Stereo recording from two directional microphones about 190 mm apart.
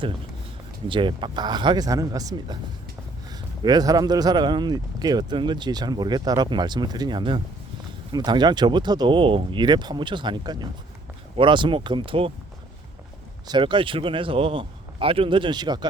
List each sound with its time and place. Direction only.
0.9 s speech: 25° right (ahead or behind)
3.6 s speech: 20° right (ahead or behind)
13.5 s speech: 25° right (ahead or behind)